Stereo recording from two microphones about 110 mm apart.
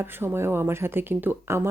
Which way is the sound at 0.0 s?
20° right (ahead or behind).